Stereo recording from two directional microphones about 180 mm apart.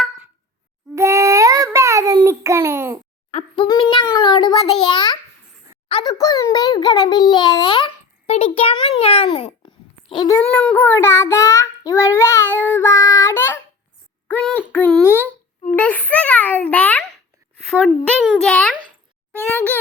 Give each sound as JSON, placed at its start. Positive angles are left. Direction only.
{"t": 0.9, "sound": "a sound", "side_deg": -15}
{"t": 3.3, "sound": "a sound", "side_deg": 30}
{"t": 5.9, "sound": "a child's voice", "side_deg": 20}
{"t": 11.9, "sound": "child singing", "side_deg": 15}
{"t": 14.3, "sound": "a child's voice", "side_deg": 10}
{"t": 14.7, "sound": "child singing", "side_deg": 5}
{"t": 15.7, "sound": "a sound", "side_deg": 10}
{"t": 17.7, "sound": "a woman's voice", "side_deg": 5}
{"t": 19.5, "sound": "child singing", "side_deg": 10}